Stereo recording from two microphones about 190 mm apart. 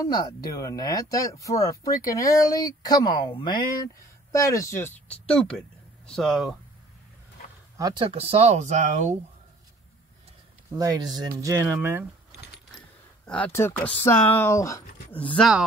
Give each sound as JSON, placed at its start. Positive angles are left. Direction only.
{"t": 0.0, "sound": "speech", "side_deg": 20}
{"t": 7.7, "sound": "speech", "side_deg": -20}
{"t": 10.8, "sound": "speech", "side_deg": -20}
{"t": 13.2, "sound": "speech", "side_deg": 5}
{"t": 15.1, "sound": "speech", "side_deg": 5}